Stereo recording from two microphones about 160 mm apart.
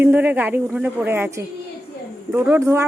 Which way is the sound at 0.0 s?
10° right (ahead or behind).